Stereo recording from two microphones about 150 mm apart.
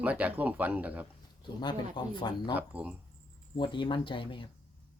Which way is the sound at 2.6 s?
10° right (ahead or behind).